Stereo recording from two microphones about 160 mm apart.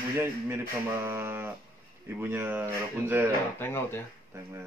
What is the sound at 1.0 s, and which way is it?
A man's voice, 15° right (ahead or behind).